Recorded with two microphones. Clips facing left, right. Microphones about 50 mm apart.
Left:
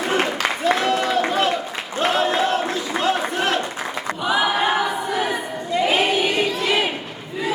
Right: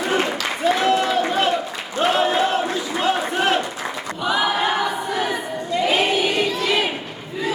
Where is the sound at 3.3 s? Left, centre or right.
Centre.